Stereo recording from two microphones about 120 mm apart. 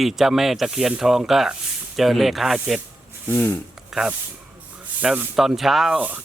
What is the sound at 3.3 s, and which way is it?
Speech, 20° left (ahead or behind).